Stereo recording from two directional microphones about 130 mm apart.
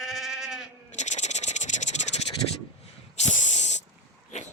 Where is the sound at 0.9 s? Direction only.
65° left (ahead or behind).